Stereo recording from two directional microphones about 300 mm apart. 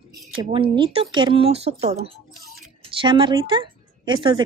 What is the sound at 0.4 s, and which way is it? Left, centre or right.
Speech, centre.